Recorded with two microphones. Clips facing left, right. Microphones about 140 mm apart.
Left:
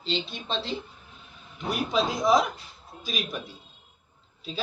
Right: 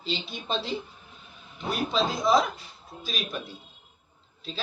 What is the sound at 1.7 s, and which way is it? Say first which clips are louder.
Speech: left 1 dB; 15° left (ahead or behind).